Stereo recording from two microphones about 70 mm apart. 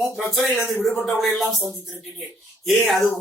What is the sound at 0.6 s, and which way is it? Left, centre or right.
Speech, left.